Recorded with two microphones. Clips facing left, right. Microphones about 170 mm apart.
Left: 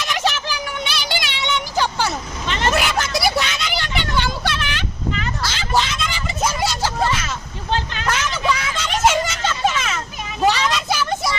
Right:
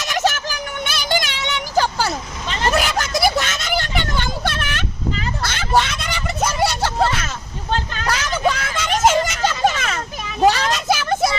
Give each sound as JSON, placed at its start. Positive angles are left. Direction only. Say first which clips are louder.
{"t": 0.0, "sound": "a sound", "louder": "right 2 dB", "side_deg": -45}
{"t": 5.4, "sound": "vehicle", "louder": "right 3 dB", "side_deg": -55}
{"t": 9.7, "sound": "children playing", "louder": "left 1 dB", "side_deg": -55}
{"t": 10.5, "sound": "vehicle", "louder": "right 1 dB", "side_deg": -45}